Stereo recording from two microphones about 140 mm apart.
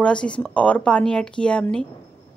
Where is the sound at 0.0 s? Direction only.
5° left (ahead or behind).